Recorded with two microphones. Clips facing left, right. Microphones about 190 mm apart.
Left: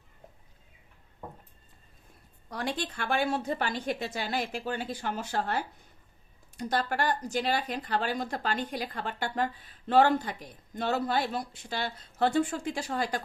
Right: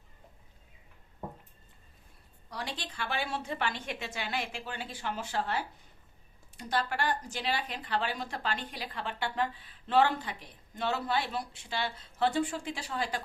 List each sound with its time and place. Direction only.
2.5 s speech: 50° left (ahead or behind)